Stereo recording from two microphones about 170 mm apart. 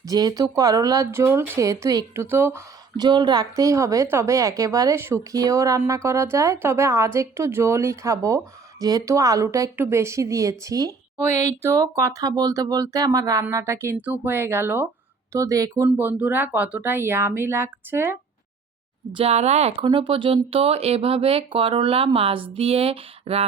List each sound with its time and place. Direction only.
0.0 s speech: 20° right (ahead or behind)
19.1 s speech: 40° right (ahead or behind)
19.8 s speech: 30° right (ahead or behind)